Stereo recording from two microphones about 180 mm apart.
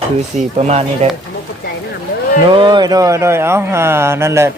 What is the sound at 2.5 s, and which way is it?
Speech, 25° right (ahead or behind).